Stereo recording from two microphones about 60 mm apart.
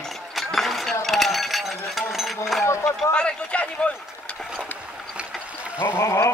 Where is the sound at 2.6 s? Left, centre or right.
Left.